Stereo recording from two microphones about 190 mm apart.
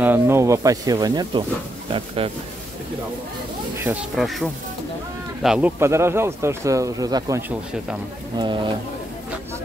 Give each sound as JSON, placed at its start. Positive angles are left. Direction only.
{"t": 0.0, "sound": "speech", "side_deg": -10}
{"t": 3.8, "sound": "speech", "side_deg": -5}
{"t": 8.4, "sound": "speech", "side_deg": -25}